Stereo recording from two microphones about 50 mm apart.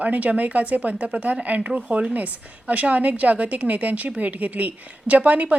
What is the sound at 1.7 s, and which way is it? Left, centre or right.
A woman's voice, centre.